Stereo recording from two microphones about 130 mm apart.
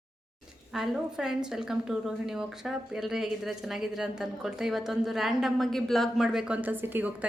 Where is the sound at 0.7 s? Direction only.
5° right (ahead or behind).